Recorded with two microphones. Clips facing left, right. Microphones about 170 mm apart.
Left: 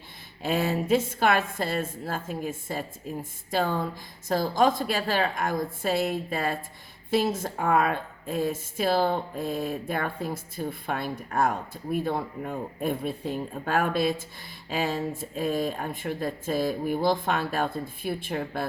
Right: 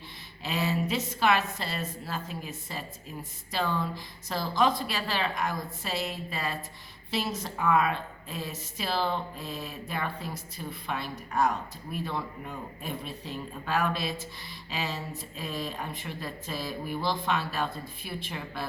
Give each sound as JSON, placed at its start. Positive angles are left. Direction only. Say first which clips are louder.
{"t": 0.4, "sound": "speech", "louder": "left 4 dB", "side_deg": 50}